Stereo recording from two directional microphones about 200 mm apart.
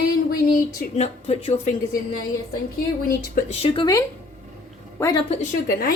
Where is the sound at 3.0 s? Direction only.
45° left (ahead or behind).